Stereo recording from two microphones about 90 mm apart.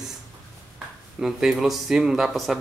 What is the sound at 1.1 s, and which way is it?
Speech, 5° right (ahead or behind).